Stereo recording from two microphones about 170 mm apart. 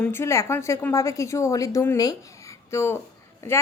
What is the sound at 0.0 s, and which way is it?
A woman's voice, 15° left (ahead or behind).